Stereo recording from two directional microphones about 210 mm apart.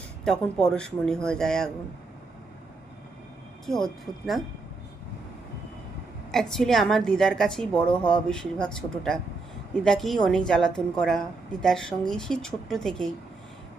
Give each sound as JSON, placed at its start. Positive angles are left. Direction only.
{"t": 0.3, "sound": "a woman's voice", "side_deg": 5}
{"t": 3.7, "sound": "a woman's voice", "side_deg": 0}
{"t": 6.3, "sound": "a woman's voice", "side_deg": 0}